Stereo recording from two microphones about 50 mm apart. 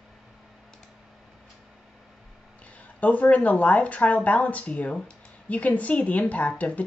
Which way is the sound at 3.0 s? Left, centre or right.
Left.